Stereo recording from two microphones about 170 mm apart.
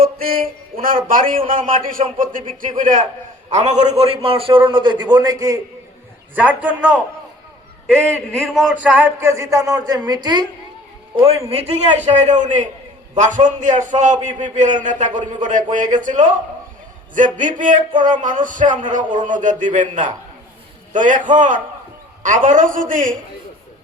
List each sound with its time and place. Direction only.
0.0 s a man's voice: 60° right (ahead or behind); by 5.5 s 20° right (ahead or behind)
6.3 s speech: 10° right (ahead or behind)
7.9 s a man's voice: 5° left (ahead or behind)
8.7 s a woman's voice: 10° right (ahead or behind); by 10.4 s 25° right (ahead or behind)
11.4 s a man's voice: 35° right (ahead or behind)